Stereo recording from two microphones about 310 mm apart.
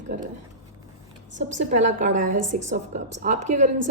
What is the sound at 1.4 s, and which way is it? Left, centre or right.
A woman's voice, right.